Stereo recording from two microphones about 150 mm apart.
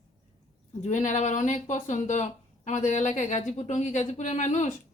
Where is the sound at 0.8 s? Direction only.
55° left (ahead or behind).